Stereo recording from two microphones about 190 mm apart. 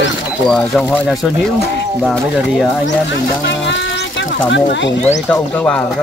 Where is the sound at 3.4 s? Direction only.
70° left (ahead or behind).